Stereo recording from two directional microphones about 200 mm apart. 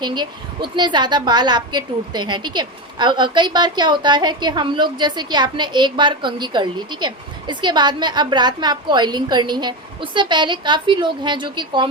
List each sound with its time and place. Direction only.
0.0 s a woman's voice: 20° right (ahead or behind)